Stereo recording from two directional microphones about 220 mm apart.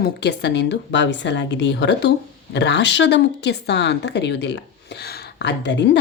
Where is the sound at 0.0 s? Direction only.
50° left (ahead or behind).